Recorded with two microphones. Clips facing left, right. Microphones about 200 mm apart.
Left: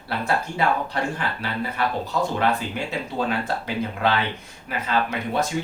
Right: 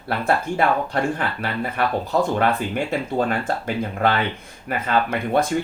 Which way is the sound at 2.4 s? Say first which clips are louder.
Right 3 dB; 50° right (ahead or behind).